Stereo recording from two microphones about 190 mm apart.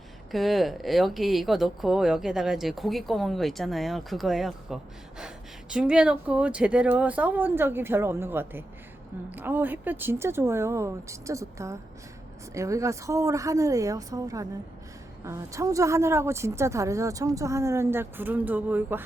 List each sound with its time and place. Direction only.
0.3 s a woman's voice: centre (ahead or behind)